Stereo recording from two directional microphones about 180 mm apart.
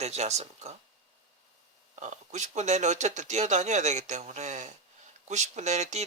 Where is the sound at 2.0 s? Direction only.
40° right (ahead or behind).